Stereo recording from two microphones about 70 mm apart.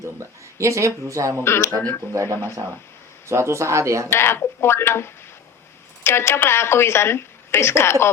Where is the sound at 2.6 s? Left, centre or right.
Right.